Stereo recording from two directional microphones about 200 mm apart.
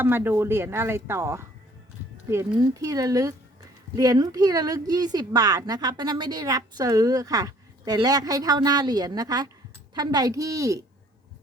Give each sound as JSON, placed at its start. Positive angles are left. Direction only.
{"t": 0.0, "sound": "a woman's voice", "side_deg": -10}